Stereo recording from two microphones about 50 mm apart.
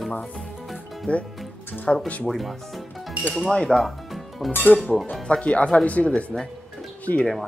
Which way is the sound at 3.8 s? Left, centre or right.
Centre.